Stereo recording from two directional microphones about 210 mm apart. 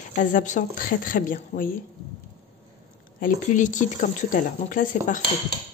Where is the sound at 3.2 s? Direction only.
35° left (ahead or behind).